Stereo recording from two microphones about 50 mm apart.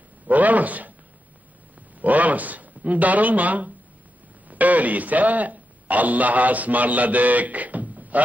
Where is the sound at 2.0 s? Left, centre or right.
Right.